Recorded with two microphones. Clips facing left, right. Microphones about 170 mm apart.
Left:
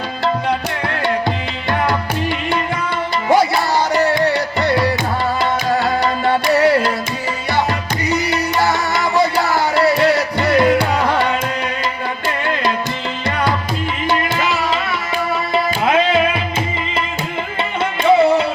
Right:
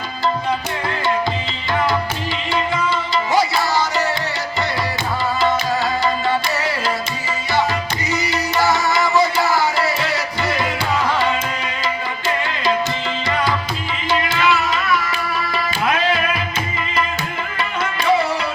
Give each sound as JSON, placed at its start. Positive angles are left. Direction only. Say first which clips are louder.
{"t": 3.2, "sound": "music", "louder": "left 5 dB", "side_deg": 55}
{"t": 6.0, "sound": "music", "louder": "left 3 dB", "side_deg": 60}
{"t": 8.1, "sound": "music", "louder": "left 3 dB", "side_deg": 55}
{"t": 10.5, "sound": "music", "louder": "left 9 dB", "side_deg": 60}
{"t": 14.1, "sound": "music", "louder": "right 1 dB", "side_deg": 50}
{"t": 15.5, "sound": "tabla", "louder": "left 7 dB", "side_deg": 25}